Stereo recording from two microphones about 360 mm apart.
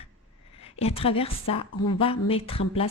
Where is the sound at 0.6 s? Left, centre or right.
Centre.